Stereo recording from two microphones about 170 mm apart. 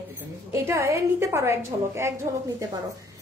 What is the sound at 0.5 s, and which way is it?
A woman's voice, 15° right (ahead or behind).